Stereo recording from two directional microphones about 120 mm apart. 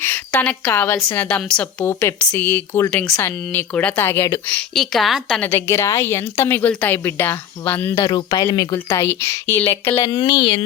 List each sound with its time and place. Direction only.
0.0 s a woman's voice: 20° left (ahead or behind)
1.8 s a woman's voice: 20° left (ahead or behind); by 5.4 s centre (ahead or behind)
5.4 s a woman's voice: 20° left (ahead or behind)
8.0 s speech: 35° left (ahead or behind)
8.9 s a woman's voice: 20° left (ahead or behind)
10.0 s speech: 30° left (ahead or behind)